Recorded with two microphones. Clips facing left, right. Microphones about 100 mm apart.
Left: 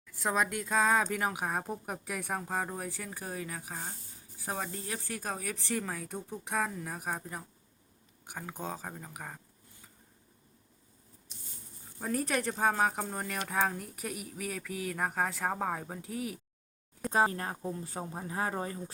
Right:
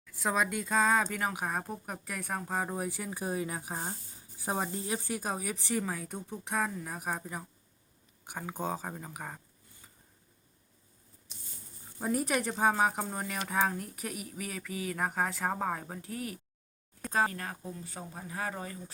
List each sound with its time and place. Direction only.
0.2 s speech: centre (ahead or behind)
11.9 s speech: 10° right (ahead or behind)
17.1 s speech: 25° left (ahead or behind)